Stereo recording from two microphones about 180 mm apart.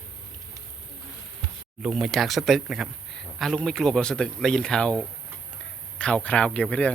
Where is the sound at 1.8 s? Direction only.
Centre (ahead or behind).